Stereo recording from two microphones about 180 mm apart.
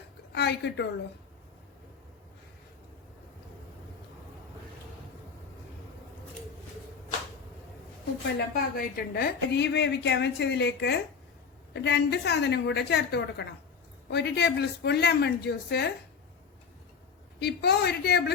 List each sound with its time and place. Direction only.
0.3 s a woman's voice: 70° left (ahead or behind)
8.5 s a woman's voice: 55° left (ahead or behind)
17.4 s a woman's voice: 65° left (ahead or behind)